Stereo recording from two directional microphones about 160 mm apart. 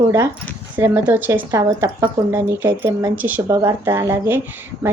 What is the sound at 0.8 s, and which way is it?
A woman's voice, 15° right (ahead or behind).